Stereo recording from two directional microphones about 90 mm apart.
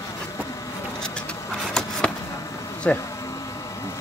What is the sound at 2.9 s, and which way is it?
Speech, 15° left (ahead or behind).